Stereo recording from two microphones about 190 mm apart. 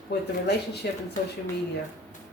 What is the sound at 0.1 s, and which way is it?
Speech, 60° left (ahead or behind).